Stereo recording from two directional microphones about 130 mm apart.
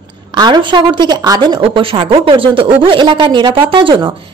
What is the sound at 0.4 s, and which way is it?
A woman's voice, 35° right (ahead or behind).